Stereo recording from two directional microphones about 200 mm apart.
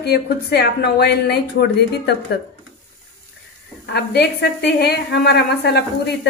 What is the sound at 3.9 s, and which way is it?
A woman's voice, 55° left (ahead or behind).